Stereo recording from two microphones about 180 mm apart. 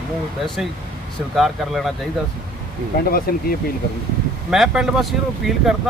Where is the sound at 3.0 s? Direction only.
55° left (ahead or behind).